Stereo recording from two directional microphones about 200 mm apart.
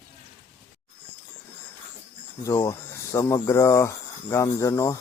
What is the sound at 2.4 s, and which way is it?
Speech, 15° left (ahead or behind).